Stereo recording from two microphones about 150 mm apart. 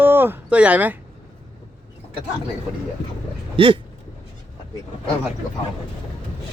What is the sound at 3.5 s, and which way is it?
Speech, 35° right (ahead or behind).